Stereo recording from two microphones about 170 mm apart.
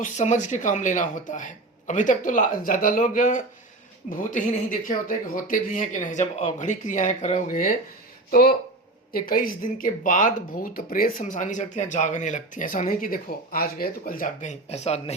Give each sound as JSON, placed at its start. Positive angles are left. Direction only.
{"t": 0.0, "sound": "speech", "side_deg": 45}
{"t": 8.3, "sound": "speech", "side_deg": 60}